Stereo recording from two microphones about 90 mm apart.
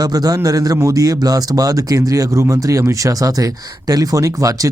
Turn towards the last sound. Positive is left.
turn(degrees=-40)  # may be behind; listen again after turning